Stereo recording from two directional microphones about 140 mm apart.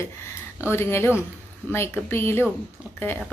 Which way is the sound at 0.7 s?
15° left (ahead or behind).